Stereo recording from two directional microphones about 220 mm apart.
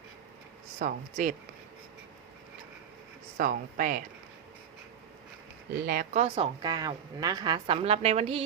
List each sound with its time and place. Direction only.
0.8 s speech: 35° right (ahead or behind)
3.3 s speech: 40° right (ahead or behind)
5.7 s a woman's voice: 45° right (ahead or behind); by 8.4 s 25° right (ahead or behind)